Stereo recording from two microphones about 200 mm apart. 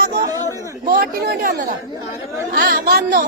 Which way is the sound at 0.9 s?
50° right (ahead or behind).